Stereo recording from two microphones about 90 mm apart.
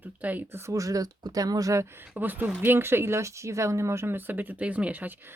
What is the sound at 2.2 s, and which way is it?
Speech, 20° right (ahead or behind).